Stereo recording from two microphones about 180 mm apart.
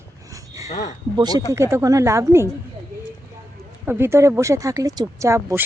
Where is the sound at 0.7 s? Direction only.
40° left (ahead or behind).